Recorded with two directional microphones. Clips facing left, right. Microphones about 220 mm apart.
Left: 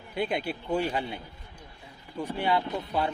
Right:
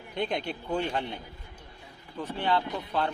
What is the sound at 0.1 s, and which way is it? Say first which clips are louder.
Speech: left 1 dB; 5° left (ahead or behind).